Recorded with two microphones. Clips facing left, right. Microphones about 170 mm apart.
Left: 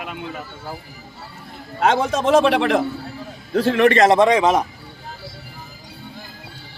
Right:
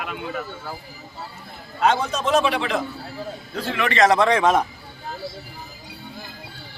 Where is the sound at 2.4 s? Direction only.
70° left (ahead or behind).